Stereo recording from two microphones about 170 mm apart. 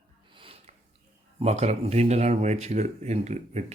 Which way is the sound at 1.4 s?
40° right (ahead or behind).